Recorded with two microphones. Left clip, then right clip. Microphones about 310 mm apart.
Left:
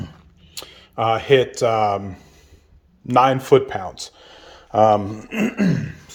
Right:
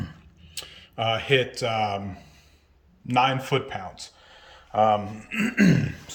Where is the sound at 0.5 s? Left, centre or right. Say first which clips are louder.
Left 6 dB; centre; by 5.0 s left.